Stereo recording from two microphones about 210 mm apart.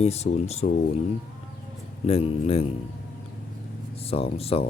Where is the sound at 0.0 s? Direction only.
30° left (ahead or behind).